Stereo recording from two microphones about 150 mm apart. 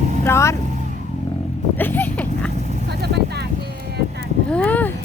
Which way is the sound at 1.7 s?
15° left (ahead or behind).